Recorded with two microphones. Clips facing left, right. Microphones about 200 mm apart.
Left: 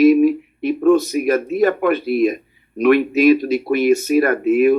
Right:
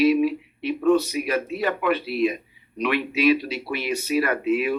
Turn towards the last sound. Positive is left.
turn(degrees=45)  # may be behind; listen again after turning